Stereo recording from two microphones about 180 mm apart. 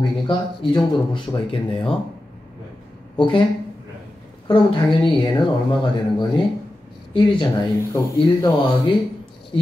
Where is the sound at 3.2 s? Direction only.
25° left (ahead or behind).